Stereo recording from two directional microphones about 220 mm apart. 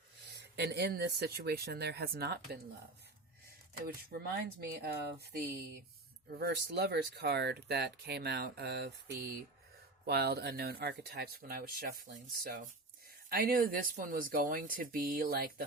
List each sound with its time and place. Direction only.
0.3 s speech: 50° right (ahead or behind)
3.8 s speech: 45° right (ahead or behind)
10.1 s speech: 45° right (ahead or behind)